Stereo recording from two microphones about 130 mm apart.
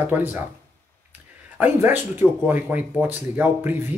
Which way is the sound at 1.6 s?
15° right (ahead or behind).